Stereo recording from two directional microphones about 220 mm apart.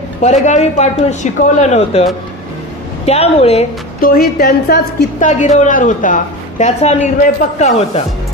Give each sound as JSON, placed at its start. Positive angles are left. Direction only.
{"t": 0.2, "sound": "a woman's voice", "side_deg": 30}
{"t": 3.1, "sound": "a woman's voice", "side_deg": 30}
{"t": 4.0, "sound": "a woman's voice", "side_deg": 40}